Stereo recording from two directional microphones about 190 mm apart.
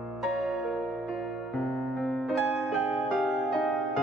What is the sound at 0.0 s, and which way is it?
Music, centre (ahead or behind).